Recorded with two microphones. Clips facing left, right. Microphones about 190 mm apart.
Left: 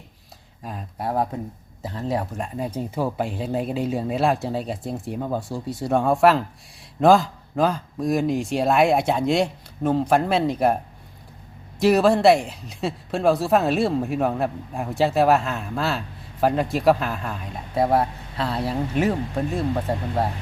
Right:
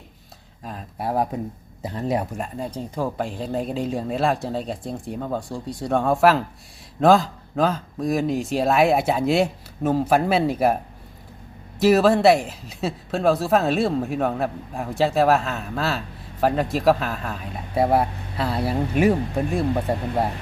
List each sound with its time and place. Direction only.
0.6 s speech: centre (ahead or behind)
1.0 s speech: 10° right (ahead or behind)
2.4 s speech: 5° left (ahead or behind)
11.8 s speech: centre (ahead or behind)